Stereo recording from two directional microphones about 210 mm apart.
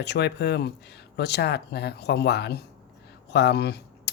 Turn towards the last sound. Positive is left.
turn(degrees=50)  # may be behind; listen again after turning